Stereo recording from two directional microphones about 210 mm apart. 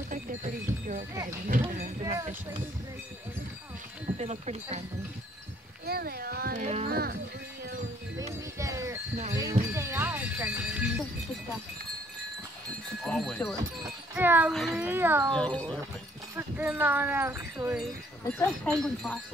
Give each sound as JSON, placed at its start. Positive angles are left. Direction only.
{"t": 0.1, "sound": "music", "side_deg": -40}
{"t": 0.7, "sound": "a sound", "side_deg": -15}
{"t": 4.2, "sound": "speech", "side_deg": -30}
{"t": 5.9, "sound": "speech", "side_deg": -45}
{"t": 6.6, "sound": "speech", "side_deg": -30}
{"t": 6.9, "sound": "speech", "side_deg": -45}
{"t": 8.5, "sound": "speech", "side_deg": -15}
{"t": 9.3, "sound": "music", "side_deg": -15}
{"t": 13.0, "sound": "speech", "side_deg": 0}
{"t": 14.1, "sound": "speech", "side_deg": -10}
{"t": 14.5, "sound": "speech", "side_deg": 0}
{"t": 15.3, "sound": "speech", "side_deg": 5}
{"t": 16.3, "sound": "speech", "side_deg": -10}
{"t": 18.2, "sound": "speech", "side_deg": 5}